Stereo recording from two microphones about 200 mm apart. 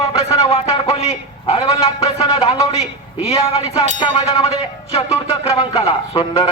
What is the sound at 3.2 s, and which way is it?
Music, 30° left (ahead or behind).